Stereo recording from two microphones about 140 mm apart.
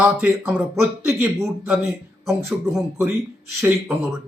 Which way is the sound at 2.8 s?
20° right (ahead or behind).